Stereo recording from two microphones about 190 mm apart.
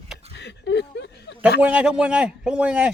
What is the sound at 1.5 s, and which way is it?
A man's voice, 5° right (ahead or behind).